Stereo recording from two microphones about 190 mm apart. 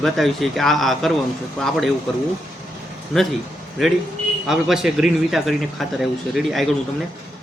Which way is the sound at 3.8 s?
Centre (ahead or behind).